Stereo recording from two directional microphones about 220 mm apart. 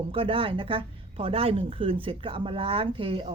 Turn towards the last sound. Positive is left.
turn(degrees=-25)  # may be behind; listen again after turning